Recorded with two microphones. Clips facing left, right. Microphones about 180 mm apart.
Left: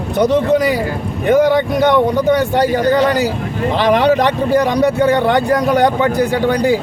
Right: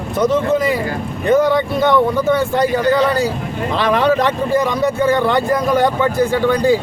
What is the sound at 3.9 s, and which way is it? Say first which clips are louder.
A man's voice: left 2 dB; 15° left (ahead or behind).